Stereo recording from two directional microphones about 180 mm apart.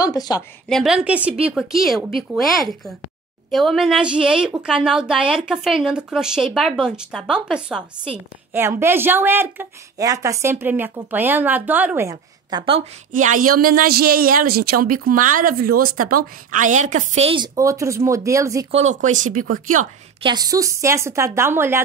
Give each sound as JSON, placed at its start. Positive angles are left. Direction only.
{"t": 0.0, "sound": "a woman's voice", "side_deg": 20}
{"t": 0.7, "sound": "a woman's voice", "side_deg": 0}
{"t": 13.1, "sound": "speech", "side_deg": -45}
{"t": 17.6, "sound": "a woman's voice", "side_deg": -15}
{"t": 18.7, "sound": "speech", "side_deg": -40}
{"t": 20.2, "sound": "a woman's voice", "side_deg": -20}